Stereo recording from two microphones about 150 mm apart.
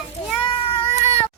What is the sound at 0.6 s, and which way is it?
Cat, 35° left (ahead or behind).